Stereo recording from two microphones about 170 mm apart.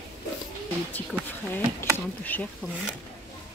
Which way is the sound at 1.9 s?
10° left (ahead or behind).